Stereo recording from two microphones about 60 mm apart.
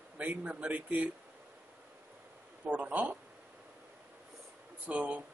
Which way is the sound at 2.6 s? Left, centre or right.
Right.